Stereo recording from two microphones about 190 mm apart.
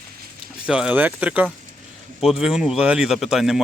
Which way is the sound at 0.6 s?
5° right (ahead or behind).